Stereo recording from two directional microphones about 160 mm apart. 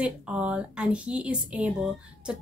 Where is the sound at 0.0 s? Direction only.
10° right (ahead or behind).